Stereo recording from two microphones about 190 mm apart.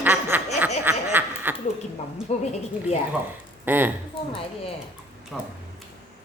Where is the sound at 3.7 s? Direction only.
10° right (ahead or behind).